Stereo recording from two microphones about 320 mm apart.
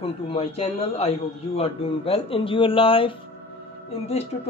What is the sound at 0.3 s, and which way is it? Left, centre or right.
Speech, centre.